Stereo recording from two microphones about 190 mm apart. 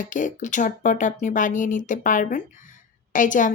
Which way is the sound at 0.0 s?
45° left (ahead or behind).